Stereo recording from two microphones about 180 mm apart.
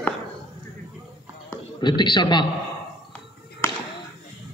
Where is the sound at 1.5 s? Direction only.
25° left (ahead or behind).